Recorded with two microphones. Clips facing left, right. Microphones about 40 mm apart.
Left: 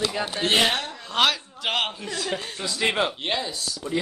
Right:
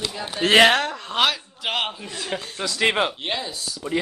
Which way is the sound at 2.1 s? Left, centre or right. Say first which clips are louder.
Left 1 dB; right.